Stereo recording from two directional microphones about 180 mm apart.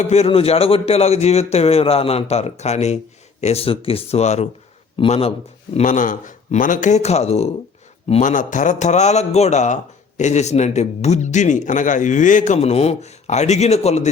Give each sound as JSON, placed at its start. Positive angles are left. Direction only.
{"t": 0.0, "sound": "speech", "side_deg": 35}